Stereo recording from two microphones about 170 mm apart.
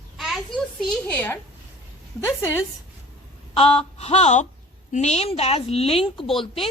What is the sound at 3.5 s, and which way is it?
A woman's voice, 35° left (ahead or behind).